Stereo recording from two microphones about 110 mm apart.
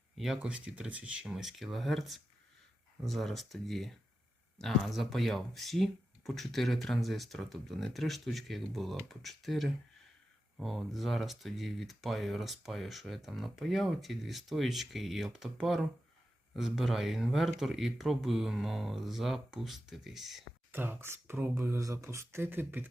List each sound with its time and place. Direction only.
0.2 s speech: 5° right (ahead or behind)
20.7 s speech: 20° right (ahead or behind)